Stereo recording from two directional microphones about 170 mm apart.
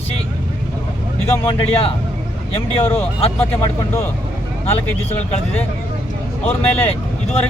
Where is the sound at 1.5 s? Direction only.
30° left (ahead or behind).